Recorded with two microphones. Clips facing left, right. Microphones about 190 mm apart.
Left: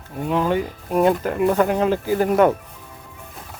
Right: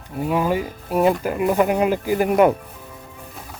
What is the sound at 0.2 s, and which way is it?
Speech, 5° right (ahead or behind).